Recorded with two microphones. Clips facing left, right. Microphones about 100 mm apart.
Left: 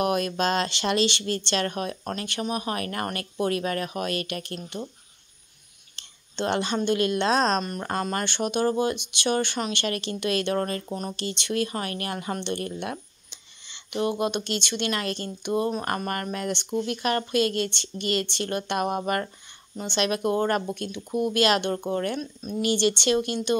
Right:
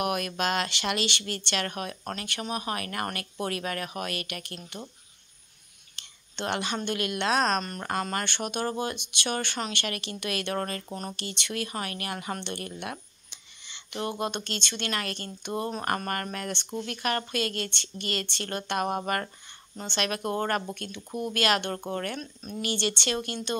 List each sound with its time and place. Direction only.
0.0 s speech: 30° left (ahead or behind)
2.4 s speech: 25° right (ahead or behind)
2.7 s speech: 30° left (ahead or behind)
5.9 s a woman's voice: 30° left (ahead or behind)
7.6 s speech: 15° left (ahead or behind)